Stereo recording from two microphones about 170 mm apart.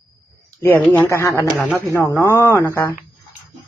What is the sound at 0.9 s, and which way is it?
Speech, 10° left (ahead or behind).